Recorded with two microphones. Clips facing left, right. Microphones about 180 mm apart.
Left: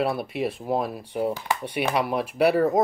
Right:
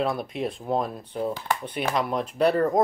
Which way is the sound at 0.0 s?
5° left (ahead or behind).